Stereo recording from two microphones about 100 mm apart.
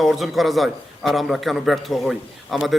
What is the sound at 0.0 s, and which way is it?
A man's voice, centre (ahead or behind).